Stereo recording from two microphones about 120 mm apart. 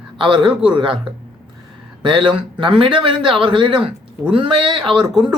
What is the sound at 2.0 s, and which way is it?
A man's voice, 45° right (ahead or behind).